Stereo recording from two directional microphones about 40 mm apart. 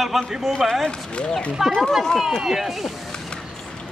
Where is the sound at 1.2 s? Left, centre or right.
Left.